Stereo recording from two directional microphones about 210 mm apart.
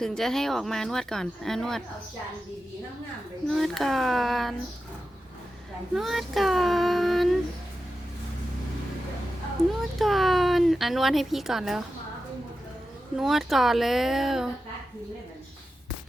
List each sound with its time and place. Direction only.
0.0 s speech: centre (ahead or behind)
3.5 s speech: centre (ahead or behind)
5.9 s speech: centre (ahead or behind)
10.0 s speech: centre (ahead or behind)
13.1 s speech: centre (ahead or behind)